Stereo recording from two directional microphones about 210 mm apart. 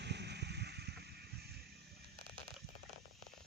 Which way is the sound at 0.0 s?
55° right (ahead or behind).